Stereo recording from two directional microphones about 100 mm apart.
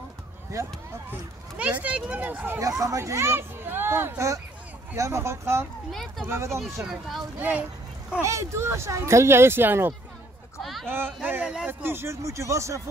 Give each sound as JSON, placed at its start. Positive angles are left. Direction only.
{"t": 0.5, "sound": "speech", "side_deg": -35}
{"t": 1.6, "sound": "speech", "side_deg": -15}
{"t": 2.6, "sound": "speech", "side_deg": -35}
{"t": 5.9, "sound": "speech", "side_deg": 5}
{"t": 6.2, "sound": "speech", "side_deg": -25}
{"t": 6.6, "sound": "speech", "side_deg": 0}
{"t": 7.3, "sound": "speech", "side_deg": -15}
{"t": 8.2, "sound": "speech", "side_deg": -30}
{"t": 10.6, "sound": "a sound", "side_deg": 0}
{"t": 11.2, "sound": "speech", "side_deg": -15}
{"t": 11.8, "sound": "speech", "side_deg": -25}